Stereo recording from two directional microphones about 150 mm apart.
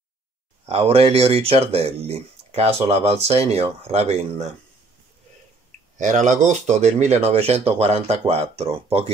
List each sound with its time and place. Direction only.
0.7 s speech: 40° right (ahead or behind)
5.9 s speech: 55° right (ahead or behind)